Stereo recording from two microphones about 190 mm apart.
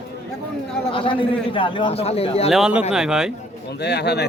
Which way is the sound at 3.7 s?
60° left (ahead or behind).